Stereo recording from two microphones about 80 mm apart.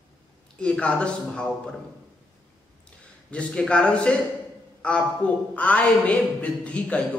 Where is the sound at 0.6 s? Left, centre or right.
Centre.